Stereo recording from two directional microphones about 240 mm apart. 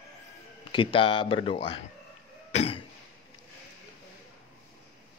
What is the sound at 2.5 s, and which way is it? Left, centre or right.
Cough, left.